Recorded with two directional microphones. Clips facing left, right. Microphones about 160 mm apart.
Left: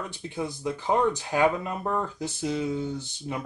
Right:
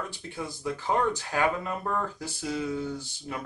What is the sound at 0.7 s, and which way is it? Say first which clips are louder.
Speech: left 2 dB; 20° left (ahead or behind).